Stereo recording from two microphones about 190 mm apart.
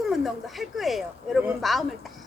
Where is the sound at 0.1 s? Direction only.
Centre (ahead or behind).